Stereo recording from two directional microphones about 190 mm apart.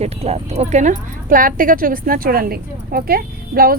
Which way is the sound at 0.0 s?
35° right (ahead or behind).